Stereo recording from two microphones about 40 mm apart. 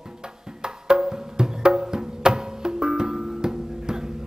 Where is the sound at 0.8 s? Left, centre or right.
Centre.